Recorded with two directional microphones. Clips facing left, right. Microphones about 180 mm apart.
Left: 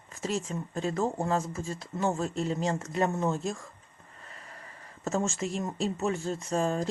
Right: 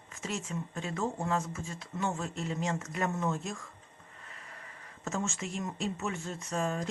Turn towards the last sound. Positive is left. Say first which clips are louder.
# left 5 dB
turn(degrees=35)  # may be behind; listen again after turning